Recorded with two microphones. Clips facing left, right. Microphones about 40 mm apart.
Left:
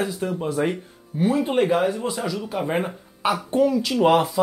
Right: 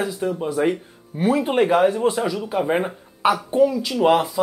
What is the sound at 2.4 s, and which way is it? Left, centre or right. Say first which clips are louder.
Speech: right 2 dB; centre.